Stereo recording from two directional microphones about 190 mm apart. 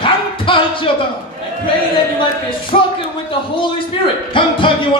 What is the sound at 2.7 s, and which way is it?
Speech, 35° left (ahead or behind).